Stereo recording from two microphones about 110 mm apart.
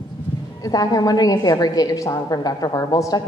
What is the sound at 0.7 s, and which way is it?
A woman's voice, 35° left (ahead or behind).